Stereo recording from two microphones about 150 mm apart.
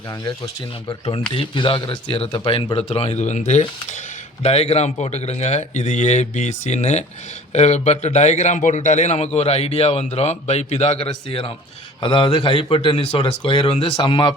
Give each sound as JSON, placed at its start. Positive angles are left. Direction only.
{"t": 1.3, "sound": "a man's voice", "side_deg": 35}